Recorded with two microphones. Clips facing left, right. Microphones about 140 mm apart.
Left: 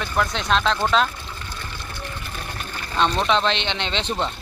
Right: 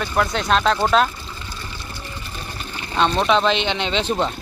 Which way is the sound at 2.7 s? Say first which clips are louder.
Right 2 dB; 5° right (ahead or behind).